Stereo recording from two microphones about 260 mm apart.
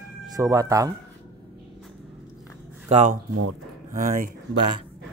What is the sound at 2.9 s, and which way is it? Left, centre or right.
Speech, right.